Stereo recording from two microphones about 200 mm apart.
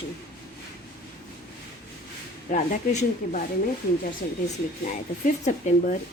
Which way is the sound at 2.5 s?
35° left (ahead or behind).